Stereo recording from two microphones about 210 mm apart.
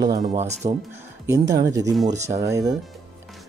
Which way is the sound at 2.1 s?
30° right (ahead or behind).